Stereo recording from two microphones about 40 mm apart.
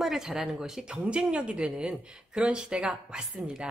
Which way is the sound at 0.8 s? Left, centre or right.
Right.